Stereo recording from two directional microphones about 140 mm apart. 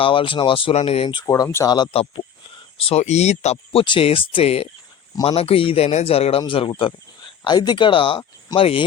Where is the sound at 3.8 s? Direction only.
40° left (ahead or behind).